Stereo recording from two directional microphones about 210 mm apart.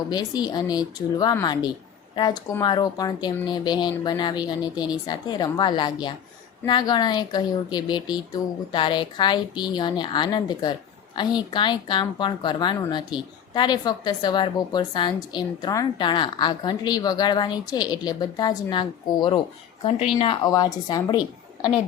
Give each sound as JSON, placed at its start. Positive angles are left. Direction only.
{"t": 0.1, "sound": "a woman's voice", "side_deg": 20}